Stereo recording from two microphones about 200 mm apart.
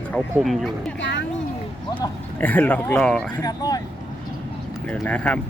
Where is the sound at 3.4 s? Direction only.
20° left (ahead or behind).